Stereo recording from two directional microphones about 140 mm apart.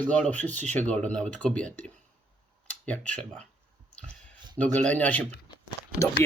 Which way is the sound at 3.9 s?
10° left (ahead or behind).